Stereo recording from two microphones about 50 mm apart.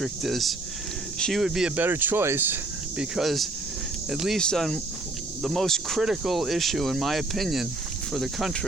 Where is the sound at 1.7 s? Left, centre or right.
Right.